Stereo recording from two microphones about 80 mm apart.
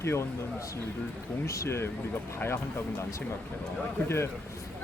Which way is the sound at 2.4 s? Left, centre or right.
Left.